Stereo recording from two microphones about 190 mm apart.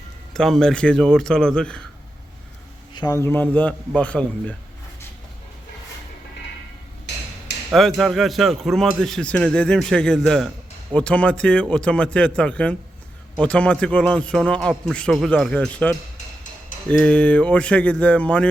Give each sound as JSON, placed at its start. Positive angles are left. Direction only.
{"t": 0.3, "sound": "speech", "side_deg": 0}
{"t": 2.9, "sound": "a man's voice", "side_deg": 20}
{"t": 7.7, "sound": "a man's voice", "side_deg": 0}
{"t": 16.1, "sound": "music", "side_deg": 40}
{"t": 17.0, "sound": "a man's voice", "side_deg": 5}